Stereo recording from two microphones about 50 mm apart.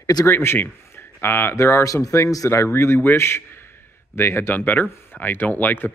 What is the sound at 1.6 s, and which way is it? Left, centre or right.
A man's voice, left.